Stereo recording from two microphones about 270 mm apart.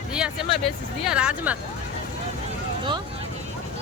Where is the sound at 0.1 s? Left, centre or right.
Centre.